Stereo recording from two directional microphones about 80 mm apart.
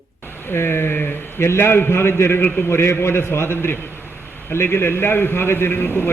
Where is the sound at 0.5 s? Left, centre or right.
Left.